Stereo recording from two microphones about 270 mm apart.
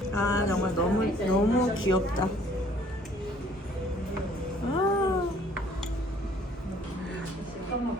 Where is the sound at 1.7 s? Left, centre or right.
Left.